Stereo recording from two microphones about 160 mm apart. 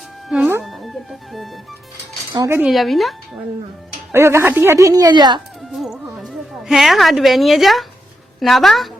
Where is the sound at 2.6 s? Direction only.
Centre (ahead or behind).